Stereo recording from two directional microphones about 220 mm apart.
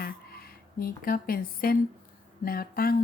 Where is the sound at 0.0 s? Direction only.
45° left (ahead or behind).